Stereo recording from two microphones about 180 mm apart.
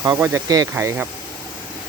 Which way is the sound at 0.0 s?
15° right (ahead or behind).